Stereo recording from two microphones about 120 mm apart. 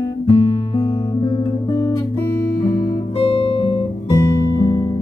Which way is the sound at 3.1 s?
50° left (ahead or behind).